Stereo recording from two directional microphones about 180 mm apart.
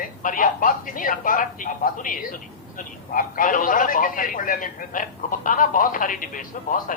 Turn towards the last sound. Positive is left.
turn(degrees=50)  # may be behind; listen again after turning